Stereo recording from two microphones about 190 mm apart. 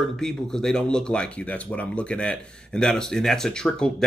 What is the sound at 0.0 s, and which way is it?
Speech, centre (ahead or behind).